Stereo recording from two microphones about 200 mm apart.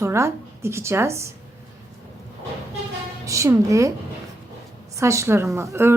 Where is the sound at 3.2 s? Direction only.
15° right (ahead or behind).